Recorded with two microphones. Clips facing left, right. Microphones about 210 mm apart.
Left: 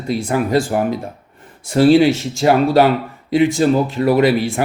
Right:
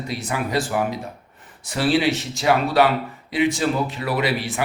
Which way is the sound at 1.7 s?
45° left (ahead or behind).